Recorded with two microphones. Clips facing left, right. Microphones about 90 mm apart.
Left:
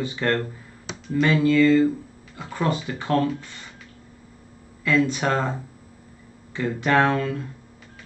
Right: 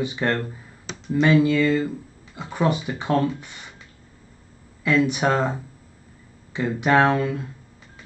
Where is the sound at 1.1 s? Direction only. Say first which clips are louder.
Even; 15° right (ahead or behind).